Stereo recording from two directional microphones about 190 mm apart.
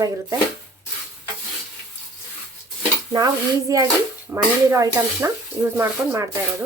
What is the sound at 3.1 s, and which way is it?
Speech, 20° right (ahead or behind).